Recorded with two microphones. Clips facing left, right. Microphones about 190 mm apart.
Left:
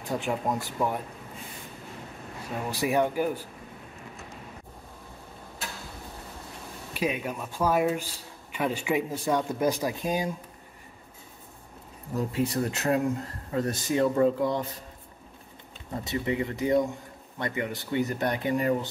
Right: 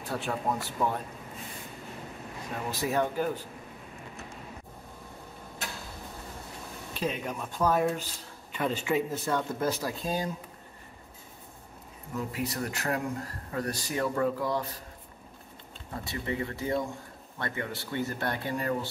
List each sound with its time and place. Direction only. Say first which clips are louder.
0.0 s speech: left 3 dB; 15° left (ahead or behind)
2.7 s speech: left 4 dB; 15° left (ahead or behind)
6.9 s speech: left 3 dB; 10° left (ahead or behind)
12.2 s speech: left 6 dB; 30° left (ahead or behind)
16.0 s speech: left 5 dB; 20° left (ahead or behind)